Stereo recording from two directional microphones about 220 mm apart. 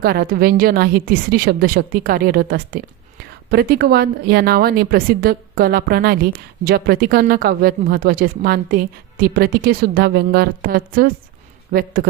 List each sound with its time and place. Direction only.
0.0 s speech: 45° right (ahead or behind)